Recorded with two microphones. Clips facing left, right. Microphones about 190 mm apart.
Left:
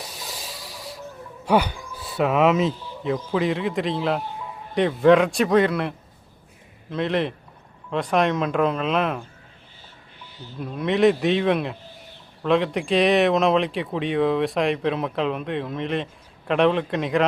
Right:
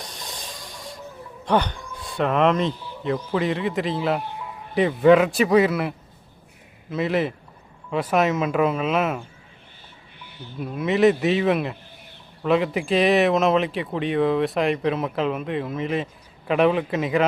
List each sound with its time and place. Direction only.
0.0 s a sound: 5° left (ahead or behind)
1.5 s speech: 10° left (ahead or behind)
6.9 s speech: 5° right (ahead or behind)
10.6 s speech: 5° right (ahead or behind)